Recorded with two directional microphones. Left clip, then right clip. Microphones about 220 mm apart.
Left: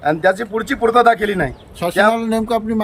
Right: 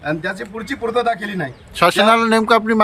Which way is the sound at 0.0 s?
25° left (ahead or behind).